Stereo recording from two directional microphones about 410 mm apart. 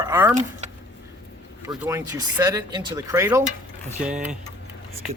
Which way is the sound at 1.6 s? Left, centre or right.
Centre.